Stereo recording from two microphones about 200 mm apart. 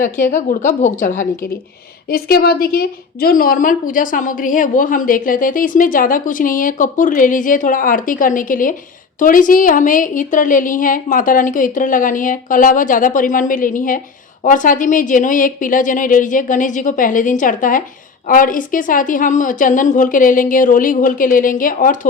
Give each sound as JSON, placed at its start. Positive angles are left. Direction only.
{"t": 0.0, "sound": "a woman's voice", "side_deg": 45}